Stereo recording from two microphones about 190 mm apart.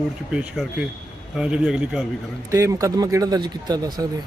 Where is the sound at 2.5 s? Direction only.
15° right (ahead or behind).